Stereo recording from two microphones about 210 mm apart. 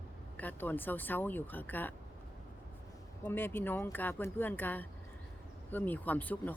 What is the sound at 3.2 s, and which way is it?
Speech, 10° left (ahead or behind).